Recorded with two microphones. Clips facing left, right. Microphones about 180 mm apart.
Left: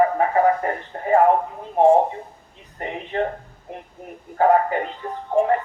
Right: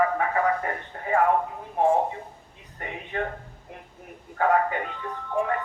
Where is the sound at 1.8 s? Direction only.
30° left (ahead or behind).